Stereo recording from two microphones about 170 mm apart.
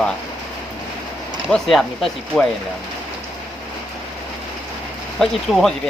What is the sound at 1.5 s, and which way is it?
Speech, 5° left (ahead or behind).